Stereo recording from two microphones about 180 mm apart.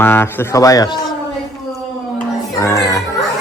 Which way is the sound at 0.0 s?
10° left (ahead or behind).